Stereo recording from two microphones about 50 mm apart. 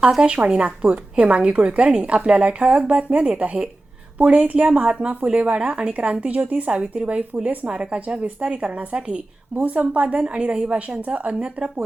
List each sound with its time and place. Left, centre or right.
0.3 s a woman's voice: right